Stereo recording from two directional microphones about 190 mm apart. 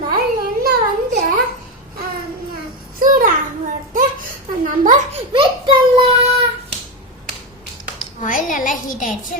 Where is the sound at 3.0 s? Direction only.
45° right (ahead or behind).